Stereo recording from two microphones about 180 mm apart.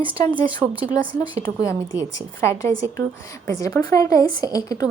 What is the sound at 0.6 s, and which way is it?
Speech, centre (ahead or behind).